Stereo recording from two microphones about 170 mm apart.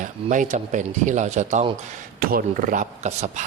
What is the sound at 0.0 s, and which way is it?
Speech, 50° right (ahead or behind).